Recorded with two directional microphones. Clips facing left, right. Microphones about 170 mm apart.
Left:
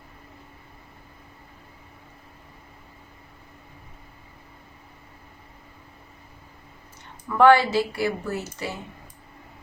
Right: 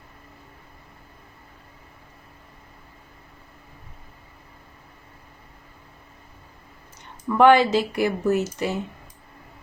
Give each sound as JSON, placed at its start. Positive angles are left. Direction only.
{"t": 7.3, "sound": "speech", "side_deg": -20}